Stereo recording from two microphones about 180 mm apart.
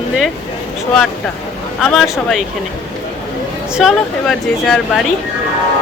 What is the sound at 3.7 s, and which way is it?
Speech, centre (ahead or behind).